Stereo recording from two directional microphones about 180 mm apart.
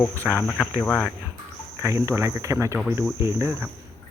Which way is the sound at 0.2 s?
15° right (ahead or behind).